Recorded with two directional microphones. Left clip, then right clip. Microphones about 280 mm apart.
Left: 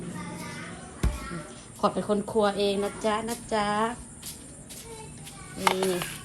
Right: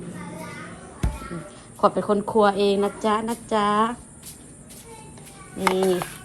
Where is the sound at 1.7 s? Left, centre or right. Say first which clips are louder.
Right 6 dB; centre.